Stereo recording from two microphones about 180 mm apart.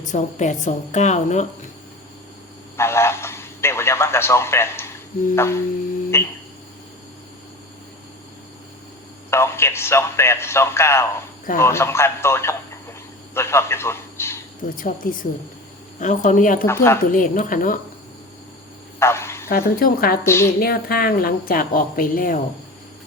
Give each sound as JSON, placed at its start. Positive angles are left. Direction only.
{"t": 0.0, "sound": "a woman's voice", "side_deg": 45}
{"t": 2.7, "sound": "radio", "side_deg": 15}
{"t": 5.3, "sound": "speech", "side_deg": 15}
{"t": 9.3, "sound": "a man's voice", "side_deg": 15}
{"t": 14.8, "sound": "a woman's voice", "side_deg": 50}
{"t": 16.6, "sound": "speech", "side_deg": 15}
{"t": 17.0, "sound": "a woman's voice", "side_deg": 50}
{"t": 18.9, "sound": "bow-wow", "side_deg": 15}
{"t": 19.5, "sound": "a woman's voice", "side_deg": 55}
{"t": 20.2, "sound": "speech", "side_deg": 15}
{"t": 20.6, "sound": "a woman's voice", "side_deg": 55}